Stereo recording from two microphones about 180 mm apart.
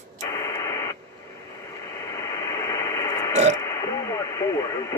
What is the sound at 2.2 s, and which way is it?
Radio, 20° left (ahead or behind).